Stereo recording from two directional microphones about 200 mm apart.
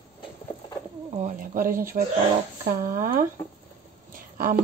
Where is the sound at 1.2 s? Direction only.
40° right (ahead or behind).